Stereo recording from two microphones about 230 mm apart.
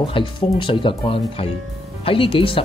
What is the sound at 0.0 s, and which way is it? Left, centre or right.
Speech, left.